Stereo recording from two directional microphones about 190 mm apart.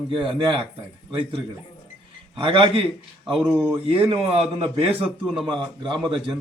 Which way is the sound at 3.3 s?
5° right (ahead or behind).